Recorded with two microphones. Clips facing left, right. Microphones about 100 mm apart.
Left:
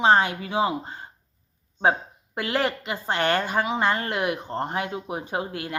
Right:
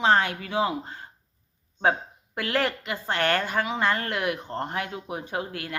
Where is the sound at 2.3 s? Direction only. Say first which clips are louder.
Left 1 dB; 20° left (ahead or behind).